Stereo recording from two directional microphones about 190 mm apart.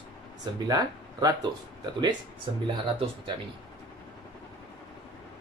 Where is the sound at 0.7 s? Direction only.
20° right (ahead or behind).